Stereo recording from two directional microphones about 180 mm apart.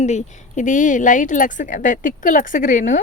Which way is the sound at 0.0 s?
40° left (ahead or behind).